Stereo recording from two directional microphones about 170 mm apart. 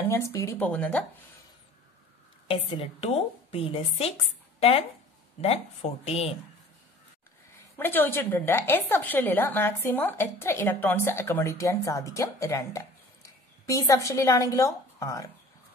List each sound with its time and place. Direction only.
0.1 s a woman's voice: 15° left (ahead or behind)
2.4 s a woman's voice: 30° left (ahead or behind)
7.7 s a woman's voice: 10° left (ahead or behind)